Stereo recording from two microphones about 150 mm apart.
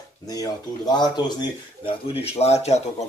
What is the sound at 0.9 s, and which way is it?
Speech, 30° left (ahead or behind).